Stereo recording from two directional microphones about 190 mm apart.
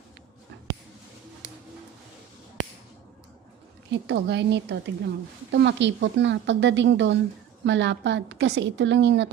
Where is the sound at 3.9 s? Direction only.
65° right (ahead or behind).